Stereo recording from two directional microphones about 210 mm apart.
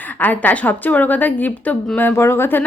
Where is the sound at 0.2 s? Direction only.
10° left (ahead or behind).